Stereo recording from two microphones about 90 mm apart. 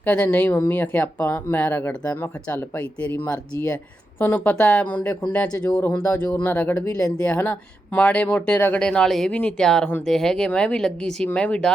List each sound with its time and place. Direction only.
0.0 s speech: 15° left (ahead or behind)
8.9 s speech: 5° left (ahead or behind)